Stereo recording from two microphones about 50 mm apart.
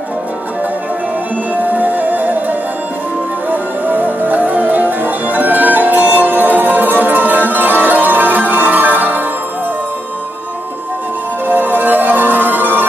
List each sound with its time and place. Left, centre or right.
1.5 s music: right
11.4 s music: right